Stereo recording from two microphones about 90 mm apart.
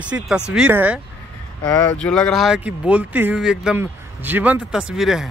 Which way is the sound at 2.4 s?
10° right (ahead or behind).